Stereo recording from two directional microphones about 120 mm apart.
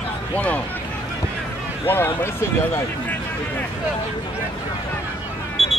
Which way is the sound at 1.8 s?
20° left (ahead or behind).